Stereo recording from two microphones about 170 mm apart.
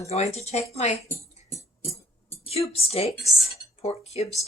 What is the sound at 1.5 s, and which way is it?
Music, 15° left (ahead or behind).